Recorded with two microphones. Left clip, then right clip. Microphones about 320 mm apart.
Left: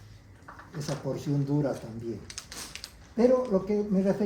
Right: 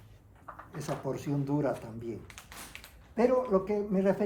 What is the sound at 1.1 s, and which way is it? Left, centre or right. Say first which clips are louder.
Speech: left 3 dB; centre.